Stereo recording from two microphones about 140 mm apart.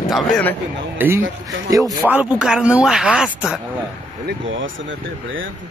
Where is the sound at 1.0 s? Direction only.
15° right (ahead or behind).